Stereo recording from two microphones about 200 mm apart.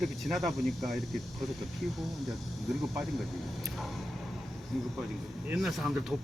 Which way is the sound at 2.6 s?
Centre (ahead or behind).